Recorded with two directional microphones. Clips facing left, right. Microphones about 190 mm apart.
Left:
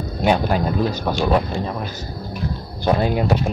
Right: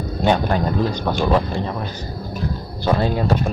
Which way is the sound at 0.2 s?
10° left (ahead or behind).